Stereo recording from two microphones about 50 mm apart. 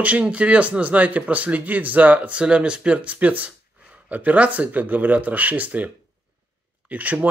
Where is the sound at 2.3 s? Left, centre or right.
Right.